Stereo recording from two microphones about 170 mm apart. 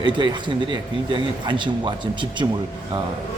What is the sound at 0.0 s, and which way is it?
Speech, 30° right (ahead or behind).